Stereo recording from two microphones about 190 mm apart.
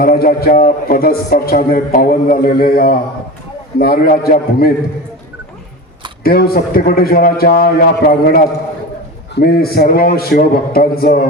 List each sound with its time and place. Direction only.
0.0 s speech: 50° left (ahead or behind)
6.2 s speech: 55° left (ahead or behind)